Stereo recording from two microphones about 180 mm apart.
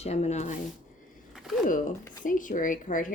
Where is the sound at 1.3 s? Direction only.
Centre (ahead or behind).